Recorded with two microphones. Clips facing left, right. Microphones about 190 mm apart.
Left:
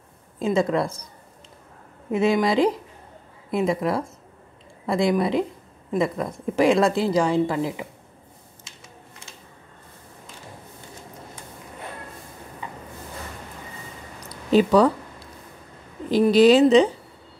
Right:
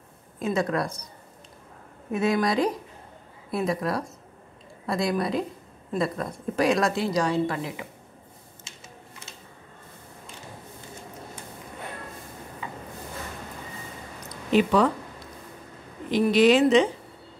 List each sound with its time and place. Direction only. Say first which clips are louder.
0.4 s a woman's voice: left 4 dB; 25° left (ahead or behind)
2.0 s a woman's voice: left 4 dB; 25° left (ahead or behind)
14.2 s a sound: left 3 dB; 35° left (ahead or behind)
16.1 s a woman's voice: left 4 dB; 35° left (ahead or behind)